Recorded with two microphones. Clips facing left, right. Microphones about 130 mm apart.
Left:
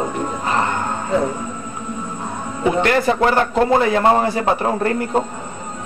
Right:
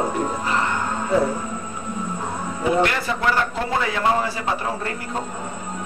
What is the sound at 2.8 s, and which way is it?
A man's voice, 45° left (ahead or behind).